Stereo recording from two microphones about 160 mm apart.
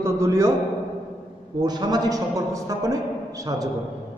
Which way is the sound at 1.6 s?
25° right (ahead or behind).